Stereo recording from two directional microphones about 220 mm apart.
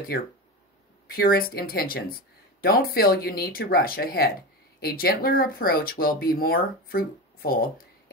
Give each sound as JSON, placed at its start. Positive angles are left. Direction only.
{"t": 1.0, "sound": "speech", "side_deg": 45}